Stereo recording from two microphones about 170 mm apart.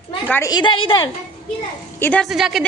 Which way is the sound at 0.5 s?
30° left (ahead or behind).